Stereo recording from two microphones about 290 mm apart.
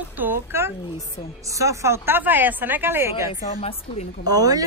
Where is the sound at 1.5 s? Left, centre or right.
Centre.